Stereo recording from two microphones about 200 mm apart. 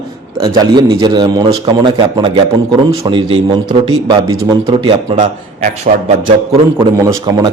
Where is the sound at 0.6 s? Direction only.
20° right (ahead or behind).